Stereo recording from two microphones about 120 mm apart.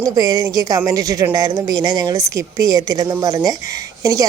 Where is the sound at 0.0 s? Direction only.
30° right (ahead or behind).